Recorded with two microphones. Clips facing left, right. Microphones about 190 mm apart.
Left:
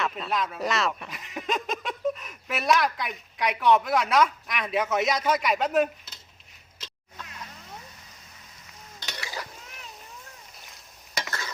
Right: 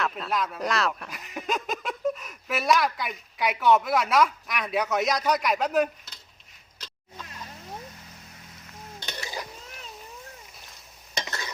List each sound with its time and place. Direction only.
0.0 s speech: centre (ahead or behind)
9.2 s a sound: 20° right (ahead or behind)
11.2 s stir: 20° right (ahead or behind)